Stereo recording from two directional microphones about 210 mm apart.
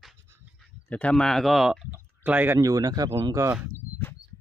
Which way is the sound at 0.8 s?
5° left (ahead or behind).